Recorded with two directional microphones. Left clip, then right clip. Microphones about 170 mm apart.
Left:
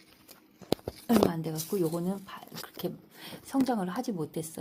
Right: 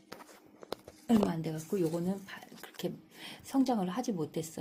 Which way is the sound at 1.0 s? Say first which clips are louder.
Left 4 dB; centre (ahead or behind).